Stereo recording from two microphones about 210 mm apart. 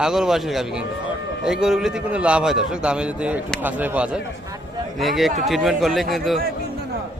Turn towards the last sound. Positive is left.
turn(degrees=0)  # may be behind; listen again after turning